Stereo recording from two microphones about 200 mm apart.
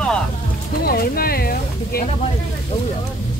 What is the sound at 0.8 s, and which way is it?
Speech, 50° left (ahead or behind).